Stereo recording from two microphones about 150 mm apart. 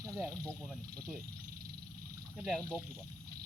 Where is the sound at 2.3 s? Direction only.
5° right (ahead or behind).